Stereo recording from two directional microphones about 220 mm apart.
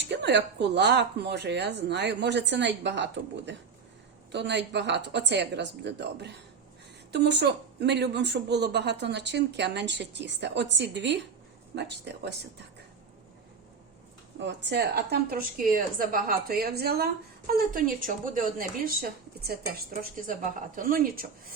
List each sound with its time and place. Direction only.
0.1 s a woman's voice: 50° right (ahead or behind)
14.3 s a woman's voice: 50° right (ahead or behind)